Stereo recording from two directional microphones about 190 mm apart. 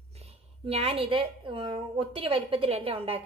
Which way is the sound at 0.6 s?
30° right (ahead or behind).